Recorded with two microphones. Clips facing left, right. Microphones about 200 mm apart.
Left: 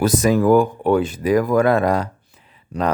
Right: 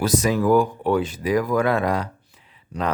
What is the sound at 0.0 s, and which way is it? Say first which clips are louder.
Speech: left 4 dB; 50° left (ahead or behind).